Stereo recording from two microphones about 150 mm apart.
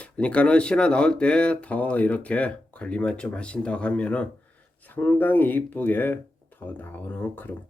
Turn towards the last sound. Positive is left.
turn(degrees=10)  # may be behind; listen again after turning